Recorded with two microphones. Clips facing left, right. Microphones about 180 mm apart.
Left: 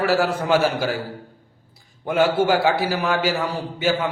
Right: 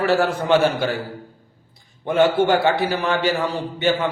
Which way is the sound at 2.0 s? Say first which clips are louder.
Right 2 dB; 5° left (ahead or behind).